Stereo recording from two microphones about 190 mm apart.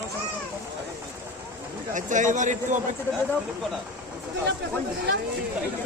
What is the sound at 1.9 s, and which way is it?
Speech, 40° right (ahead or behind).